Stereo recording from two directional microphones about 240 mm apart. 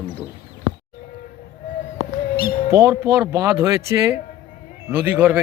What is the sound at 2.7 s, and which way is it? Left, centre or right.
Speech, centre.